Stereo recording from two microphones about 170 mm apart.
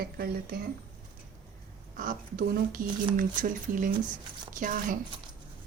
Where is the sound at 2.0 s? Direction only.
55° right (ahead or behind).